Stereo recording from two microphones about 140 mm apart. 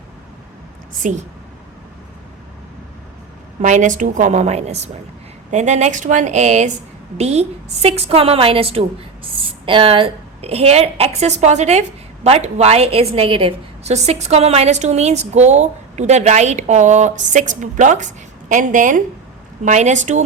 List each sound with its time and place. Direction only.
1.0 s a woman's voice: 60° right (ahead or behind)
3.6 s a woman's voice: 65° right (ahead or behind)
19.6 s a woman's voice: 60° right (ahead or behind)